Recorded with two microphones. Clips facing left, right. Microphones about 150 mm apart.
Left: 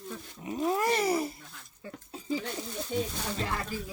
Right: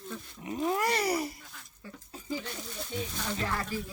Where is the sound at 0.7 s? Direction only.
25° left (ahead or behind).